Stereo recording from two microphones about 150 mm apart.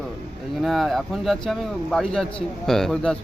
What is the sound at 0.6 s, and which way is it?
Speech, centre (ahead or behind).